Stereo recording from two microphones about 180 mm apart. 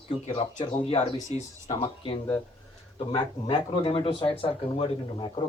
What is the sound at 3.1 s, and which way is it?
A man's voice, 30° left (ahead or behind).